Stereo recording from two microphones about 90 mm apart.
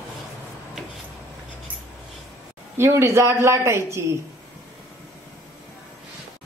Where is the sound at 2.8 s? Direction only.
30° right (ahead or behind).